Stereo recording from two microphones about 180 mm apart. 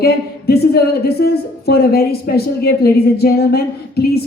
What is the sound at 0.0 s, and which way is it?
A woman's voice, 60° left (ahead or behind).